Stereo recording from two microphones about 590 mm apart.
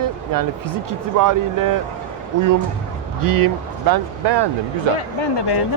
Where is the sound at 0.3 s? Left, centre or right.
Right.